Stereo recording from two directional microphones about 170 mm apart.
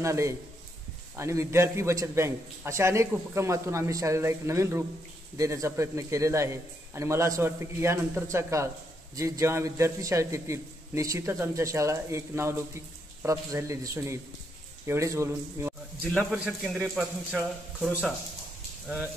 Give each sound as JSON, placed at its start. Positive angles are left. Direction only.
{"t": 0.0, "sound": "a man's voice", "side_deg": -15}
{"t": 16.1, "sound": "a man's voice", "side_deg": 0}